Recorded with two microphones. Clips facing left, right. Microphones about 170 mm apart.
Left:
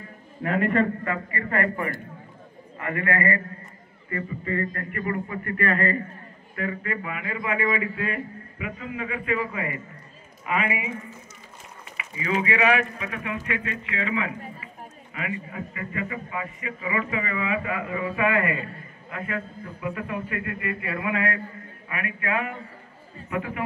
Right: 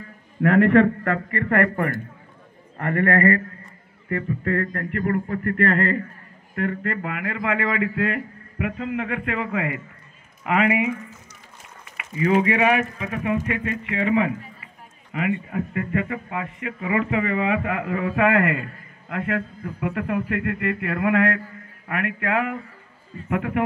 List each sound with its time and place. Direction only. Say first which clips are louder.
0.4 s a man's voice: right 7 dB; 75° right (ahead or behind)
4.1 s a man's voice: right 5 dB; 75° right (ahead or behind)
12.2 s speech: right 5 dB; 55° right (ahead or behind)
15.5 s a man's voice: right 8 dB; 60° right (ahead or behind)